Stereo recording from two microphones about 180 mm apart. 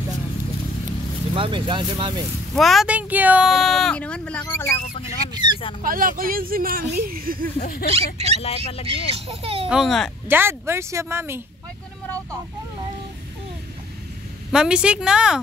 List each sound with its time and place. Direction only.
1.3 s speech: 30° right (ahead or behind)
2.5 s speech: centre (ahead or behind)
5.0 s speech: 25° right (ahead or behind)
5.8 s speech: 50° right (ahead or behind)
7.9 s a child's voice: 35° right (ahead or behind)
8.4 s speech: 35° left (ahead or behind)
8.8 s a child's voice: 35° right (ahead or behind)
9.7 s speech: centre (ahead or behind)
10.2 s speech: 10° right (ahead or behind)
14.5 s speech: 5° right (ahead or behind)